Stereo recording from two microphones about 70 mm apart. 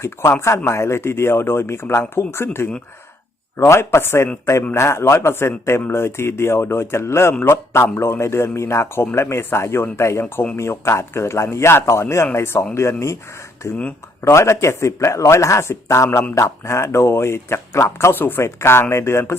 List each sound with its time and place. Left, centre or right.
0.0 s a man's voice: left
18.1 s speech: left